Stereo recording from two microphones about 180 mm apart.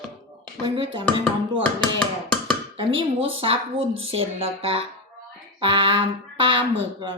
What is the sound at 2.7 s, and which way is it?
A woman's voice, 30° right (ahead or behind).